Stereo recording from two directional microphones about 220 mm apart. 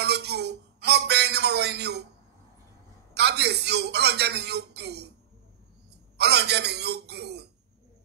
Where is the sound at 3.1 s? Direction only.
50° right (ahead or behind).